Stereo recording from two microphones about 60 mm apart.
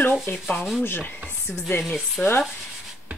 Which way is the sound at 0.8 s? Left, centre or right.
Left.